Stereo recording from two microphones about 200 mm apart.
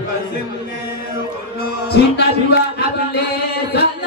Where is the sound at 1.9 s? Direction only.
55° left (ahead or behind).